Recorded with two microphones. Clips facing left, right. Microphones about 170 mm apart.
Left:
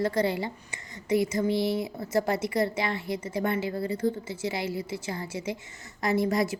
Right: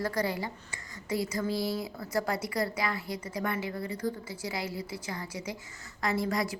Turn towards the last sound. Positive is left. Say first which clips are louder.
# left 5 dB
turn(degrees=25)  # may be behind; listen again after turning